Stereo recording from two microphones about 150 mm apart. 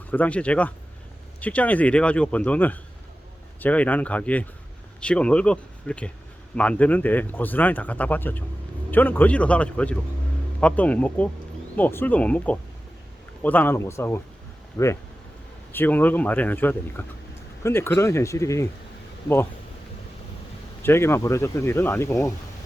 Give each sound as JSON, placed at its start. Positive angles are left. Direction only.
{"t": 0.1, "sound": "speech", "side_deg": 10}
{"t": 15.7, "sound": "speech", "side_deg": 15}
{"t": 20.8, "sound": "speech", "side_deg": 15}